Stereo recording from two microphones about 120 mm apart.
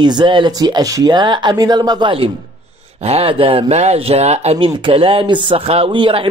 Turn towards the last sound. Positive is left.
turn(degrees=-45)  # may be behind; listen again after turning